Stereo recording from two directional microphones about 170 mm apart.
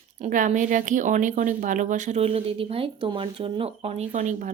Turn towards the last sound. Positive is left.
turn(degrees=-45)  # may be behind; listen again after turning